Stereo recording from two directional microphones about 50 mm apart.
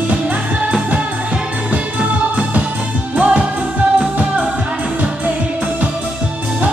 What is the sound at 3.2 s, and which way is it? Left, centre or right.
Music, right.